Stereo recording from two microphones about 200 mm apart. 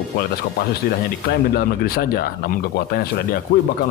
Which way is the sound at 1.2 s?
50° left (ahead or behind).